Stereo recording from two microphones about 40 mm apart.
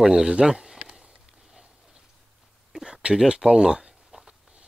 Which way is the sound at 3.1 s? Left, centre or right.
Centre.